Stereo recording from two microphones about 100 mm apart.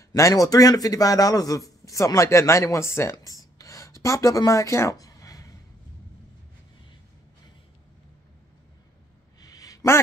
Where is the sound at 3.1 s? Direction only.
35° left (ahead or behind).